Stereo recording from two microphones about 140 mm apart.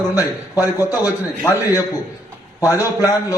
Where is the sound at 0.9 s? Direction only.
25° left (ahead or behind).